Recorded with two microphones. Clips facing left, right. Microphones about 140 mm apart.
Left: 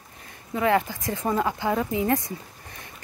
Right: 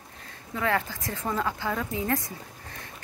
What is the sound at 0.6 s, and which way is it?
Speech, 20° left (ahead or behind).